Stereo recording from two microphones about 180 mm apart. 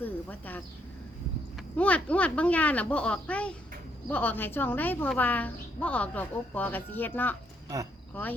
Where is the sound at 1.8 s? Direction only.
10° left (ahead or behind).